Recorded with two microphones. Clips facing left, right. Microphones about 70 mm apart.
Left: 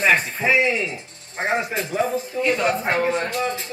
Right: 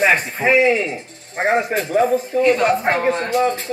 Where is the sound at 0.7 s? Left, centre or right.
Right.